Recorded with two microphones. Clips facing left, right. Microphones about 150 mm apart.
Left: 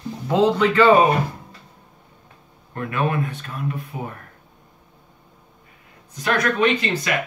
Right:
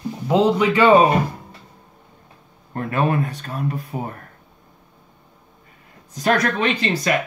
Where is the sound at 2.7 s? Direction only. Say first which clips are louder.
Right 3 dB; 35° right (ahead or behind).